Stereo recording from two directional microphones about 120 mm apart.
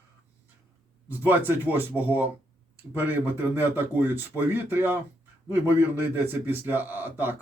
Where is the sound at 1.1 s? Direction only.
15° right (ahead or behind).